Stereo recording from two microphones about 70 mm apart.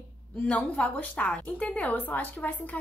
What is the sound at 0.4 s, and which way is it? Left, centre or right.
A woman's voice, centre.